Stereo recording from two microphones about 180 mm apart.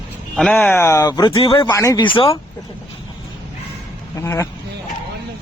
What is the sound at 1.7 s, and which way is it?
Speech, 20° left (ahead or behind).